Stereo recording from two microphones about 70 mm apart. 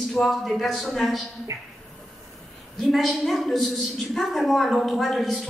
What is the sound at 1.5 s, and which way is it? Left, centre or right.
Speech, right.